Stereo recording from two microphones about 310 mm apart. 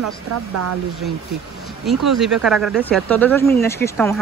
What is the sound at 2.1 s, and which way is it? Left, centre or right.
Speech, centre.